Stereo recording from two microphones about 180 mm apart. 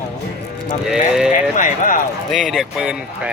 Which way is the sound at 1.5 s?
50° left (ahead or behind).